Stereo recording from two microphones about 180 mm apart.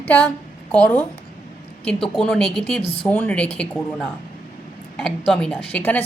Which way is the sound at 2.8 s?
30° left (ahead or behind).